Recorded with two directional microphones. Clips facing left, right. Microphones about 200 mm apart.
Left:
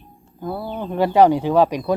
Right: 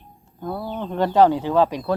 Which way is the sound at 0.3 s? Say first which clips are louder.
Left 1 dB; 5° left (ahead or behind).